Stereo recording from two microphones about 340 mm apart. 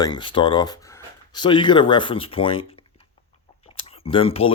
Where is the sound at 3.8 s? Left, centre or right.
Centre.